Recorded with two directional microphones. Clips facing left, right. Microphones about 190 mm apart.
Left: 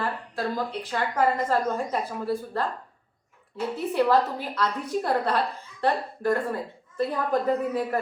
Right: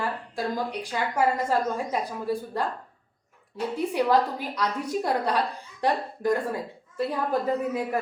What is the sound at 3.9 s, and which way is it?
A woman's voice, 15° right (ahead or behind).